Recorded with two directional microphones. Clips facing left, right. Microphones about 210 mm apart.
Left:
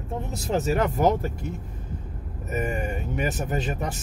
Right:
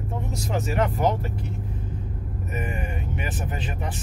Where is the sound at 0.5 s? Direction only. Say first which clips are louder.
Left 2 dB; 35° left (ahead or behind).